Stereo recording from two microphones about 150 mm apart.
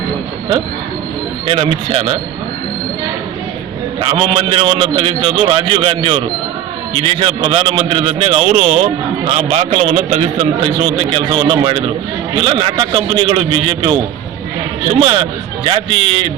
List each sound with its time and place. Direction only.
1.5 s a man's voice: 40° right (ahead or behind)
4.0 s a man's voice: 35° right (ahead or behind)